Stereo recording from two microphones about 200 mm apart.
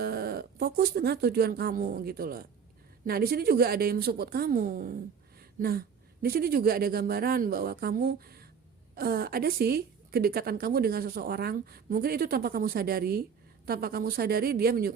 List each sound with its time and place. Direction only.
0.0 s a woman's voice: 50° right (ahead or behind)
5.4 s a sound: 50° right (ahead or behind)
6.2 s a woman's voice: 50° right (ahead or behind)